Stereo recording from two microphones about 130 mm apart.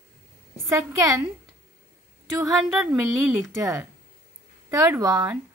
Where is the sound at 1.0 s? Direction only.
25° right (ahead or behind).